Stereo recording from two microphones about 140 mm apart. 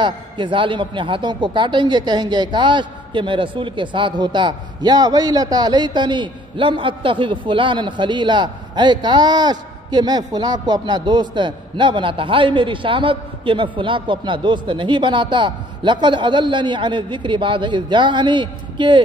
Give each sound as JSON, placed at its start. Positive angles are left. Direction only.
{"t": 0.0, "sound": "a man's voice", "side_deg": -35}